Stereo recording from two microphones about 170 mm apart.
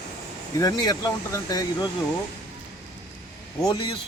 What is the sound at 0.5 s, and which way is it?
Speech, 20° left (ahead or behind).